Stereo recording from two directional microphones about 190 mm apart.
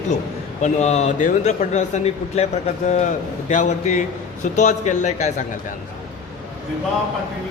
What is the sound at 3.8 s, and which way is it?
A man's voice, 40° left (ahead or behind).